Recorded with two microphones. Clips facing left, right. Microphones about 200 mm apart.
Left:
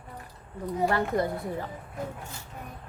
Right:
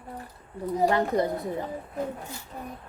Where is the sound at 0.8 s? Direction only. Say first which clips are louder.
Right 3 dB; 20° right (ahead or behind).